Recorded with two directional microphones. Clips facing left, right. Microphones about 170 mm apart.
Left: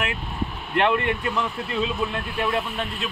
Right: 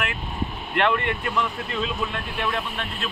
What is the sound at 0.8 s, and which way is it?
Speech, 25° left (ahead or behind).